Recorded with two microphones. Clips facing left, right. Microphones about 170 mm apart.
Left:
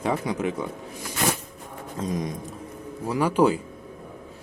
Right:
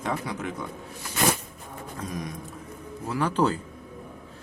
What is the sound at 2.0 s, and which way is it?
Speech, 20° left (ahead or behind).